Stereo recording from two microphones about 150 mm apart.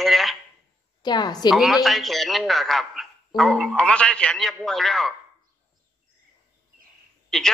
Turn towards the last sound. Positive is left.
turn(degrees=5)  # may be behind; listen again after turning